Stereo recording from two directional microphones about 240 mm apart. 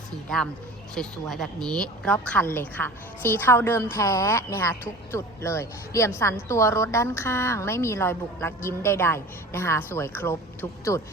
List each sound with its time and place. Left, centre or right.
0.9 s a woman's voice: centre